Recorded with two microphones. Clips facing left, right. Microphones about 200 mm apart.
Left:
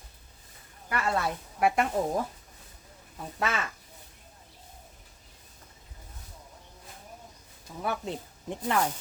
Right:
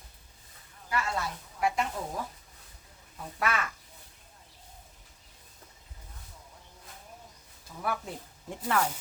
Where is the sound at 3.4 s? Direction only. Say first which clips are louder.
Even; 25° left (ahead or behind).